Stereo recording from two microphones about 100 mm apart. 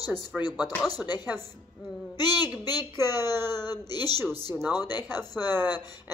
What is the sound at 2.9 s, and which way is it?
Speech, 25° right (ahead or behind).